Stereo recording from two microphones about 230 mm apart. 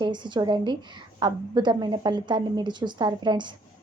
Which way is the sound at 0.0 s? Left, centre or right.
Centre.